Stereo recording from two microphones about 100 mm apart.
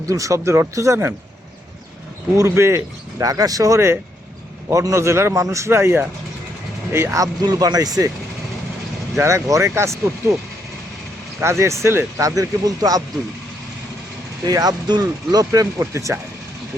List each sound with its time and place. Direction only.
0.1 s a man's voice: 30° right (ahead or behind)
2.4 s a man's voice: 25° right (ahead or behind)
9.1 s a man's voice: 30° right (ahead or behind)
11.3 s a man's voice: 30° right (ahead or behind)
12.4 s speech: 40° right (ahead or behind)
14.4 s speech: 40° right (ahead or behind)